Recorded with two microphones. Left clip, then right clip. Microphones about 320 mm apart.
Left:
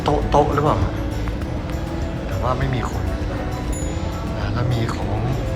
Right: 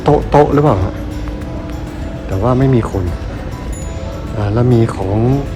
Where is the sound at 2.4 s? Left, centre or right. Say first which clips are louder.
Right 10 dB; centre.